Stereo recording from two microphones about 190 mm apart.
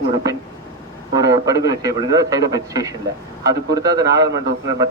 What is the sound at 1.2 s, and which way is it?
A man's voice, 20° right (ahead or behind).